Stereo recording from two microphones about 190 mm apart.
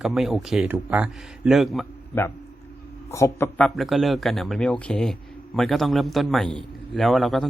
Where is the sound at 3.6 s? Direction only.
Centre (ahead or behind).